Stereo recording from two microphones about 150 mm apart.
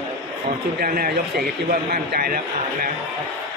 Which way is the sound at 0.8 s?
75° right (ahead or behind).